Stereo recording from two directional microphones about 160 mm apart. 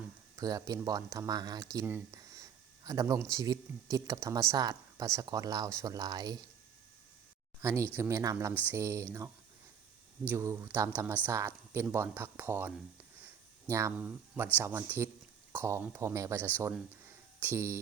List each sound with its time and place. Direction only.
0.3 s speech: 20° right (ahead or behind)
7.6 s speech: 15° right (ahead or behind)
10.2 s speech: 15° right (ahead or behind)